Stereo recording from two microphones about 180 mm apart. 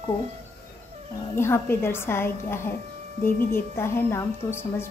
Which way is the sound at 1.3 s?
15° left (ahead or behind).